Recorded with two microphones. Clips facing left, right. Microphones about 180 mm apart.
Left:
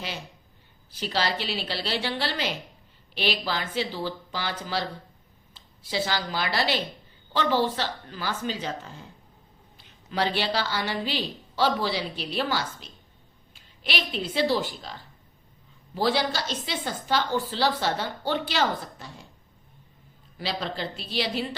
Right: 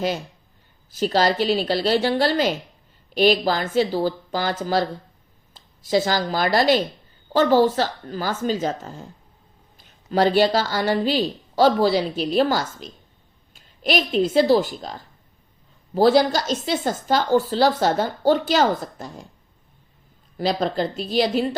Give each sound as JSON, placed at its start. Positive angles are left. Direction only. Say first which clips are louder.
{"t": 0.9, "sound": "a woman's voice", "louder": "right 9 dB", "side_deg": -45}
{"t": 20.4, "sound": "speech", "louder": "right 9 dB", "side_deg": -45}